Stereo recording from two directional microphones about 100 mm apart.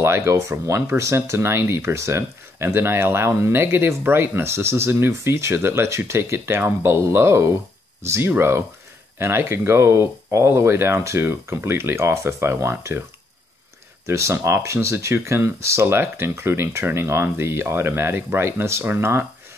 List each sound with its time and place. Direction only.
0.0 s speech: 30° right (ahead or behind)
14.0 s speech: 30° right (ahead or behind)